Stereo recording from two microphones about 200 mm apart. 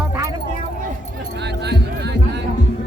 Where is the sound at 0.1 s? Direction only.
15° right (ahead or behind).